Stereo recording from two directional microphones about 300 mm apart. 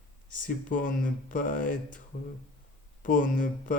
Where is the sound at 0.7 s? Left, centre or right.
Left.